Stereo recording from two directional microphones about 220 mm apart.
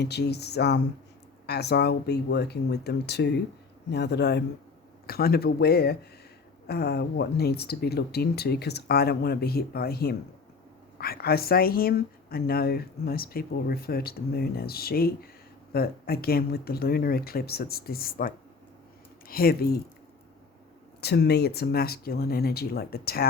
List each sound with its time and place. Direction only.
0.0 s speech: 50° left (ahead or behind)
21.0 s speech: 50° left (ahead or behind)